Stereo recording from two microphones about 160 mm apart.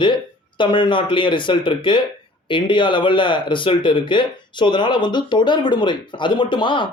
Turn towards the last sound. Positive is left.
turn(degrees=30)  # may be behind; listen again after turning